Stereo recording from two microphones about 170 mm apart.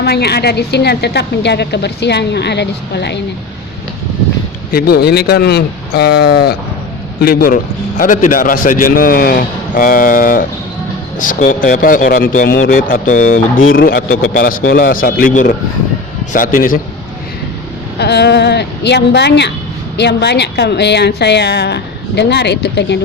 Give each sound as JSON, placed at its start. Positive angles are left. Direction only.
{"t": 0.0, "sound": "a woman's voice", "side_deg": 70}
{"t": 4.7, "sound": "a man's voice", "side_deg": 65}
{"t": 18.0, "sound": "a woman's voice", "side_deg": 80}